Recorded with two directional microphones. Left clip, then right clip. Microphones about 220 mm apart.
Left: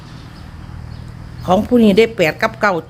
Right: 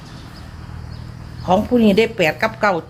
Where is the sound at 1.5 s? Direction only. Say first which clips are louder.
Left 2 dB; 30° left (ahead or behind).